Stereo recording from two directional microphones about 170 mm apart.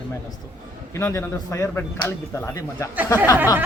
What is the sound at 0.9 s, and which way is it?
Speech, 15° left (ahead or behind).